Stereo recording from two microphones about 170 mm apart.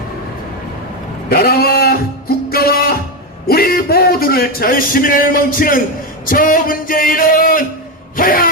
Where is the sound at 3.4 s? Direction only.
65° left (ahead or behind).